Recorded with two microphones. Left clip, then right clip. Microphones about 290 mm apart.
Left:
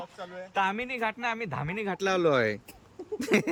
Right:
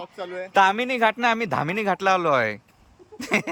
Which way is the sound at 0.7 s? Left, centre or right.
Centre.